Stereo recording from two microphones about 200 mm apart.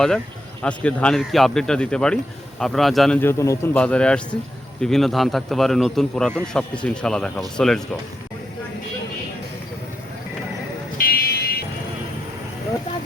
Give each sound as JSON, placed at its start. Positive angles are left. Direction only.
{"t": 0.6, "sound": "a man's voice", "side_deg": 5}
{"t": 10.9, "sound": "music", "side_deg": 50}